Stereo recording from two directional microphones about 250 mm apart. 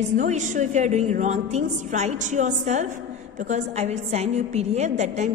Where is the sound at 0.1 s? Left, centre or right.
Right.